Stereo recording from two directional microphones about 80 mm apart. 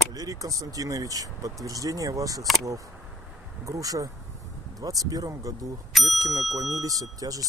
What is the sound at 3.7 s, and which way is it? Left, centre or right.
Speech, right.